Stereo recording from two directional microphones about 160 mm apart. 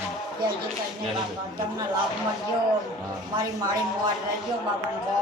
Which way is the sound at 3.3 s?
25° right (ahead or behind).